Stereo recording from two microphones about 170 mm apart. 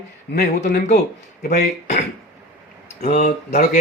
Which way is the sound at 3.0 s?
45° left (ahead or behind).